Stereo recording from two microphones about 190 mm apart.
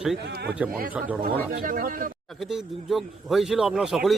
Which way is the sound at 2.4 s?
Centre (ahead or behind).